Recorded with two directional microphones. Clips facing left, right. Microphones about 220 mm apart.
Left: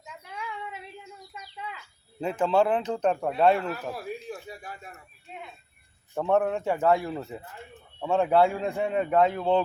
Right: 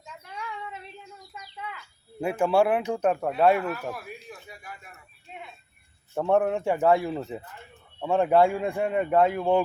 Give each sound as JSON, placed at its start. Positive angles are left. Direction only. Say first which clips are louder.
{"t": 0.0, "sound": "child singing", "louder": "even", "side_deg": 10}
{"t": 2.2, "sound": "a man's voice", "louder": "right 1 dB", "side_deg": -10}
{"t": 3.7, "sound": "a sound", "louder": "even", "side_deg": 30}
{"t": 6.1, "sound": "a man's voice", "louder": "right 1 dB", "side_deg": -15}